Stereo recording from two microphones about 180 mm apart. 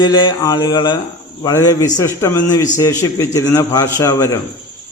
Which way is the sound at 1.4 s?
20° left (ahead or behind).